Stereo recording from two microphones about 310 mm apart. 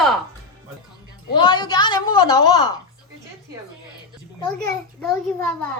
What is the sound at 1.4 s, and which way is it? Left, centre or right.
A woman's voice, centre.